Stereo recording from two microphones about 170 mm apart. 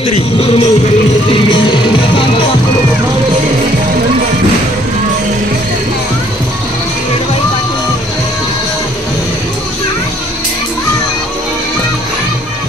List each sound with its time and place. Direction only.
0.0 s music: 35° left (ahead or behind)